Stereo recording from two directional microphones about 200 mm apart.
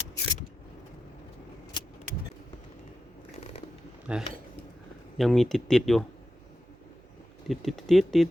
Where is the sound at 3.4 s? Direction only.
35° left (ahead or behind).